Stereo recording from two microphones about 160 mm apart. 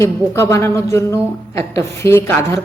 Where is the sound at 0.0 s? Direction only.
20° left (ahead or behind).